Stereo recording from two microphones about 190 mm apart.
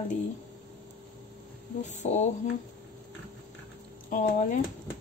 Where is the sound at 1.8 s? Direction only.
40° left (ahead or behind).